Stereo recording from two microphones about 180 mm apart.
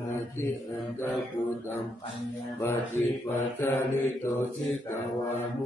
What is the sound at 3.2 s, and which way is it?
Mantra, 10° left (ahead or behind).